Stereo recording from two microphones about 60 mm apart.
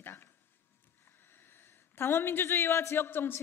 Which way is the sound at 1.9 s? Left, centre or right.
Left.